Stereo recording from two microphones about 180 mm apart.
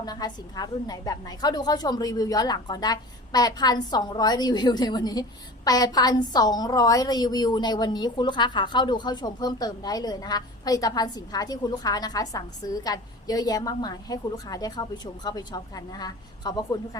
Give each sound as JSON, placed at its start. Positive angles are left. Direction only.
{"t": 0.0, "sound": "a woman's voice", "side_deg": 20}